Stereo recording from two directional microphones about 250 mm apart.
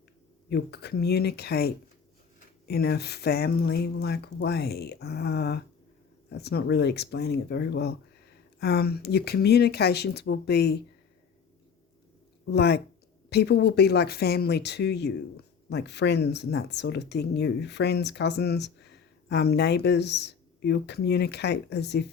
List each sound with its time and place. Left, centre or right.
0.5 s speech: left
12.5 s speech: left